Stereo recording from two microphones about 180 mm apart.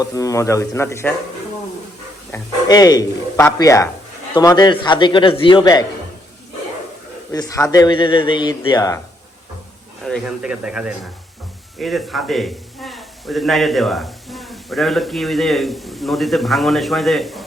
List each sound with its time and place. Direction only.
0.0 s speech: 20° left (ahead or behind)
2.3 s speech: 20° left (ahead or behind)
7.3 s speech: 20° left (ahead or behind)
10.0 s speech: centre (ahead or behind)